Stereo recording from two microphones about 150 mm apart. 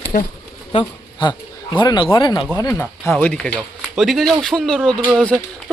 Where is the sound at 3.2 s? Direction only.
10° left (ahead or behind).